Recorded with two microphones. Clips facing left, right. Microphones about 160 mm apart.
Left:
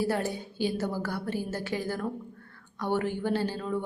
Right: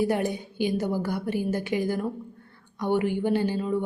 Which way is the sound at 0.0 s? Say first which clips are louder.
Right 4 dB; 15° right (ahead or behind).